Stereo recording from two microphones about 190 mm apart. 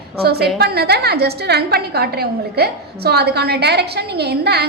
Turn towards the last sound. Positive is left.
turn(degrees=-60)  # may be behind; listen again after turning